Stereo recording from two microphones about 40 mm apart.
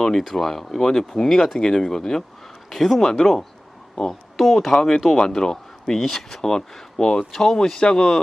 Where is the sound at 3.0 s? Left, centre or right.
Centre.